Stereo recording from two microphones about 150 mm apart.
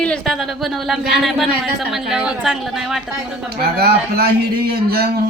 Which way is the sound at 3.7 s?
90° right.